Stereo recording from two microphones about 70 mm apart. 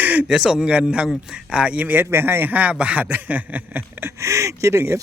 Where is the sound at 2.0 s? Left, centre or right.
Right.